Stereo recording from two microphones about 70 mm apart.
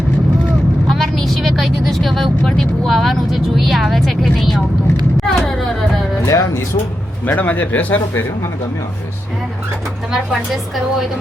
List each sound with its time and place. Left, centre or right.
0.9 s vehicle: centre
2.8 s a woman's voice: centre
5.1 s a sound: centre
6.2 s speech: left
7.3 s speech: left
10.1 s a woman's voice: centre